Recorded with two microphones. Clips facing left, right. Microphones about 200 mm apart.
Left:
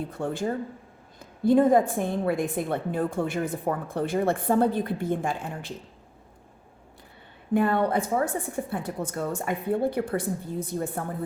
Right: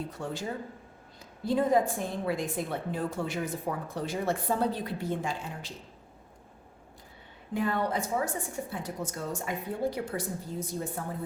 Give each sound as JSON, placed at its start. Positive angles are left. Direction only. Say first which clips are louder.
{"t": 0.1, "sound": "a woman's voice", "louder": "left 7 dB", "side_deg": 55}
{"t": 7.5, "sound": "a woman's voice", "louder": "left 6 dB", "side_deg": 60}